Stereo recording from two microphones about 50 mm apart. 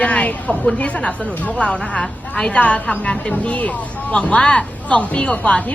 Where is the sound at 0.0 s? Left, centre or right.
Left.